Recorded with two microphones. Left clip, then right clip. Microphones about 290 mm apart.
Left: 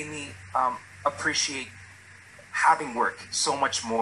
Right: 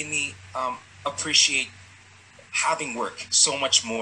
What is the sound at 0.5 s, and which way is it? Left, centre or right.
Speech, centre.